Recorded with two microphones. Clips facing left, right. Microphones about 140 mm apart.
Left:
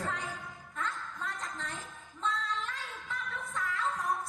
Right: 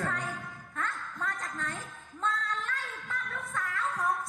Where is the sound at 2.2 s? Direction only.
50° right (ahead or behind).